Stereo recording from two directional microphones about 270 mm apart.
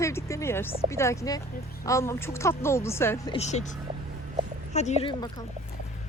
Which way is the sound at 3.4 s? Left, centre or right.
Left.